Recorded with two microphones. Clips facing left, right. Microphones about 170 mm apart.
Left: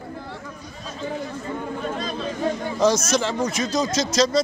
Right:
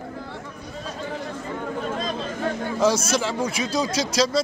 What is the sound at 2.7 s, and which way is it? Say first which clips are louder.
A man's voice: left 1 dB; 5° right (ahead or behind).